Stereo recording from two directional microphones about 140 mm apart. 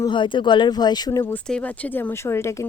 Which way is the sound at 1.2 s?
10° left (ahead or behind).